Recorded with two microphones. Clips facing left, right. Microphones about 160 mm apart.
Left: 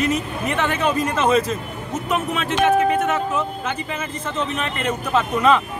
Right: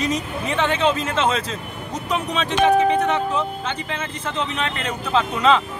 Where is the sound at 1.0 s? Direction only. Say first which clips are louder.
Left 3 dB; 10° left (ahead or behind).